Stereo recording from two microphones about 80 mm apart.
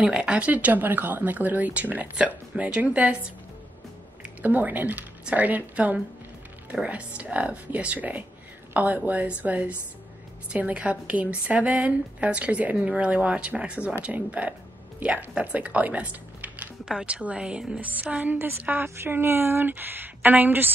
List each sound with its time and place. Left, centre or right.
0.0 s speech: centre
4.2 s a woman's voice: right